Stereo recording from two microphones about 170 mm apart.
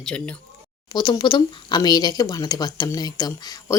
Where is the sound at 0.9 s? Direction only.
25° left (ahead or behind).